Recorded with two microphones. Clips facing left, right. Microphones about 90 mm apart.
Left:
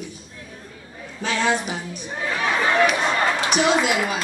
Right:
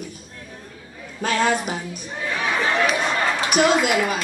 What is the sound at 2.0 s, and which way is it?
Speech, 20° left (ahead or behind).